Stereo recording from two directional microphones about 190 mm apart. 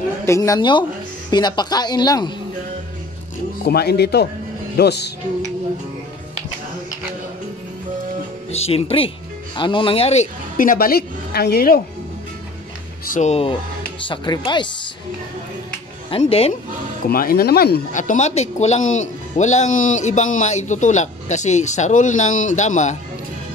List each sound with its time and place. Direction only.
0.2 s speech: 15° left (ahead or behind)
3.6 s speech: 55° left (ahead or behind)
8.5 s speech: 35° left (ahead or behind)
10.6 s a woman's voice: 50° left (ahead or behind)
13.0 s speech: 40° left (ahead or behind); by 14.7 s 25° left (ahead or behind)
16.1 s speech: 30° left (ahead or behind)
17.1 s speech: 50° left (ahead or behind)
17.9 s speech: 40° left (ahead or behind)